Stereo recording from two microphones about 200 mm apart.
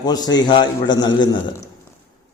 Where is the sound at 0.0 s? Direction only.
20° left (ahead or behind).